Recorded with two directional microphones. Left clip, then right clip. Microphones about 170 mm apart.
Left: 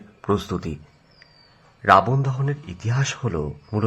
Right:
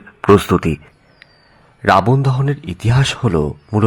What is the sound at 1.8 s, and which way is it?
Speech, 25° right (ahead or behind).